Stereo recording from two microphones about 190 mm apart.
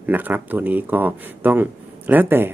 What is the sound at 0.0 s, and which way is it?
A man's voice, 10° right (ahead or behind).